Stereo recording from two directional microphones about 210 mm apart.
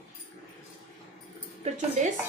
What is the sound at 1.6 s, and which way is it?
Speech, 35° right (ahead or behind).